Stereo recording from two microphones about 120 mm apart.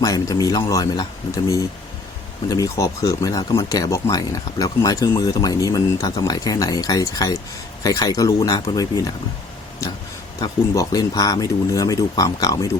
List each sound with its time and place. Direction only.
0.0 s speech: 30° left (ahead or behind)
2.5 s speech: 25° left (ahead or behind)
10.4 s speech: 30° left (ahead or behind)